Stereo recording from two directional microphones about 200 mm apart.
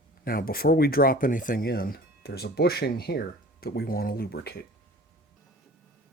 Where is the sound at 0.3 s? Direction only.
45° left (ahead or behind).